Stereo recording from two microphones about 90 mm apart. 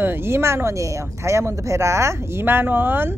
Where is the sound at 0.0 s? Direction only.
25° right (ahead or behind).